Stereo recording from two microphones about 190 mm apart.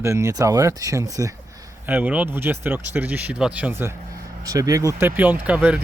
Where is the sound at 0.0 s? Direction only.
15° right (ahead or behind).